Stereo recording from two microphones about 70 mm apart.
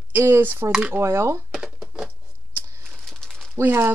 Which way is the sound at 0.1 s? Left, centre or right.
Right.